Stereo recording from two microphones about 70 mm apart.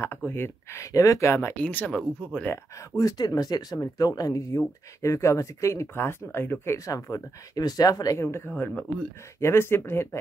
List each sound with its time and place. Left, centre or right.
0.0 s speech: left
0.9 s speech: left
1.6 s speech: left
3.2 s speech: left
6.9 s speech: left
8.2 s speech: left
8.5 s speech: left